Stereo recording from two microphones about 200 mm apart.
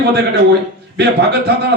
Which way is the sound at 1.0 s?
55° right (ahead or behind).